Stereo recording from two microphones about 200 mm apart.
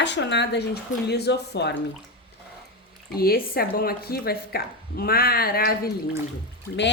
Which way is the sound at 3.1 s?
50° left (ahead or behind).